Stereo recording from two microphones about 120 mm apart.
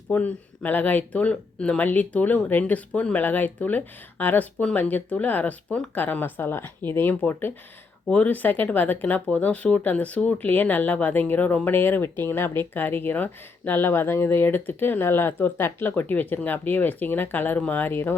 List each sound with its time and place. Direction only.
0.1 s speech: 15° left (ahead or behind)